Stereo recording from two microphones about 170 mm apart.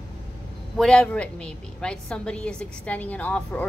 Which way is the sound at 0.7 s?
5° left (ahead or behind).